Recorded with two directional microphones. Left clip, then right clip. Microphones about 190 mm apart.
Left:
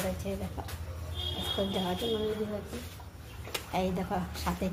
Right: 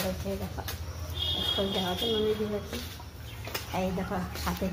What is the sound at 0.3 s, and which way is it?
Speech, 15° left (ahead or behind).